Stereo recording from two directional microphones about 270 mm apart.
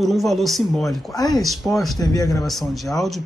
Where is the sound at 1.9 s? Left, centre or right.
Centre.